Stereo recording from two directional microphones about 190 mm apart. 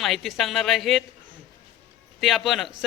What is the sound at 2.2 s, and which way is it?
Speech, centre (ahead or behind).